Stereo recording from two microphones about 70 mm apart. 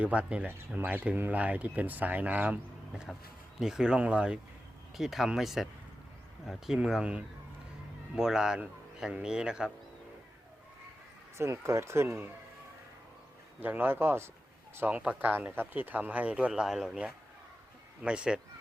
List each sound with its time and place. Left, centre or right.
0.0 s speech: centre
3.6 s speech: centre
4.9 s a man's voice: centre
11.3 s speech: right
13.6 s speech: right
14.8 s speech: centre
18.0 s speech: centre